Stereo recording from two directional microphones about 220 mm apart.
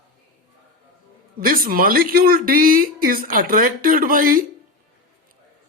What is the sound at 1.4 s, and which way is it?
Speech, 40° right (ahead or behind).